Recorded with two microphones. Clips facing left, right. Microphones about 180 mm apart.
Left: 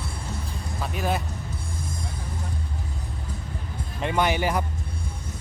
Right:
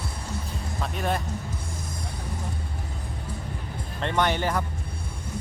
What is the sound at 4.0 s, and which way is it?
Speech, 10° left (ahead or behind).